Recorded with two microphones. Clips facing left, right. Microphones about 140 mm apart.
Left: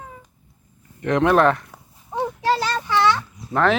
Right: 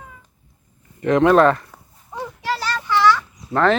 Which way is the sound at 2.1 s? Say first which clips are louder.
Left 5 dB; 25° left (ahead or behind).